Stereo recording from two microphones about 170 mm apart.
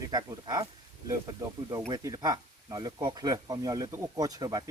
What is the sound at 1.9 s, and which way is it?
Speech, 25° right (ahead or behind).